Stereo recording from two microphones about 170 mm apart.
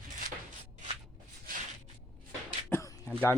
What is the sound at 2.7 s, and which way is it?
Throat clearing, 15° left (ahead or behind).